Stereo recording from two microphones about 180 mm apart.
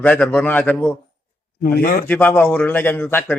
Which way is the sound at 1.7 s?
50° left (ahead or behind).